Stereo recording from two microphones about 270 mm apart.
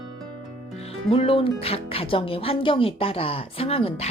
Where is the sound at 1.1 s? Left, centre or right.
Centre.